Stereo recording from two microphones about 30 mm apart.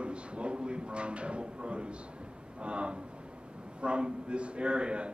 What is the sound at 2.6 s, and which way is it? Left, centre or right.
A man's voice, right.